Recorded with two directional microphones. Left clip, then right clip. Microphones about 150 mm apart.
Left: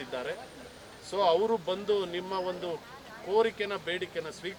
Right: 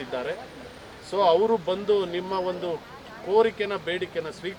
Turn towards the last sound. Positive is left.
turn(degrees=-10)  # may be behind; listen again after turning